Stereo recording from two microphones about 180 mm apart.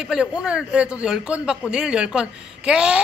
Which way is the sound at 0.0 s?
5° right (ahead or behind).